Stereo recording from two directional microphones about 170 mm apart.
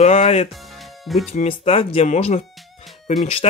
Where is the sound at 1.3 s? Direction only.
40° left (ahead or behind).